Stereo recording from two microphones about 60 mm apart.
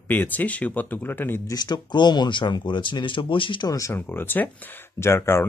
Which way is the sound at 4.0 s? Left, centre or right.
Left.